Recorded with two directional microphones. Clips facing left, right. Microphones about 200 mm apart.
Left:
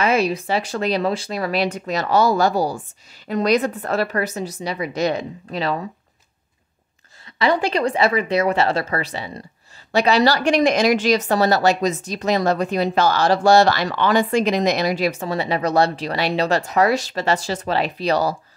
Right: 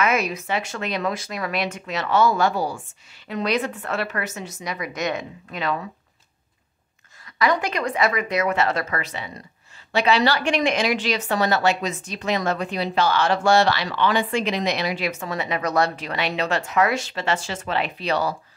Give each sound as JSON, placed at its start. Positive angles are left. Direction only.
{"t": 0.0, "sound": "a woman's voice", "side_deg": 30}
{"t": 7.3, "sound": "a woman's voice", "side_deg": 30}